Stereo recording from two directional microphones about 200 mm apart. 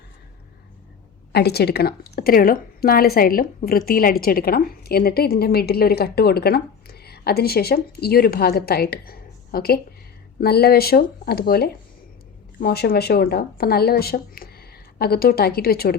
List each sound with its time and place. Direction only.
1.3 s a woman's voice: 55° left (ahead or behind)